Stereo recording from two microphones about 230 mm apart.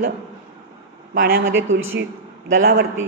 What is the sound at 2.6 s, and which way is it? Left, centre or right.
Speech, right.